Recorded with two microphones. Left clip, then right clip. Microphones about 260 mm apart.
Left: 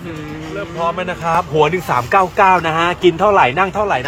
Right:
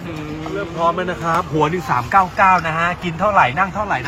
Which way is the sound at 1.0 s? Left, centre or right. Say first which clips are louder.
Left 2 dB; left.